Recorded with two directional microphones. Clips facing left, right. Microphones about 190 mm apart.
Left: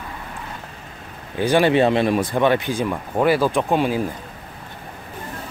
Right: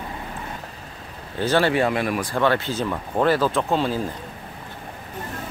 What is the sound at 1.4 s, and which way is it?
Speech, 15° left (ahead or behind).